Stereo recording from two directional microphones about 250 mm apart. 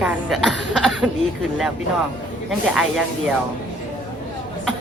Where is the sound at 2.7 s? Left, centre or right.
Centre.